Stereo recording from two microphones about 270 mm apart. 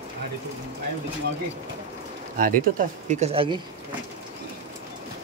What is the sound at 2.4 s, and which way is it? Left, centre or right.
Speech, right.